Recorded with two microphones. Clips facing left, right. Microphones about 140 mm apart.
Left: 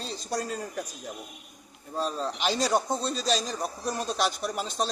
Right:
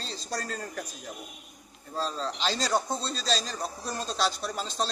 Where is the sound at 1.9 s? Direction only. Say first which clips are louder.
Left 2 dB; 15° left (ahead or behind).